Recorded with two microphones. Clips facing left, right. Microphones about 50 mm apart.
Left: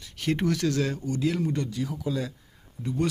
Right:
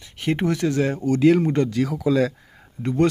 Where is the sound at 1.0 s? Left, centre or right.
Right.